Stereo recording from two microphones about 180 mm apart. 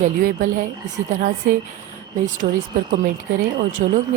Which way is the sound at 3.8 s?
45° right (ahead or behind).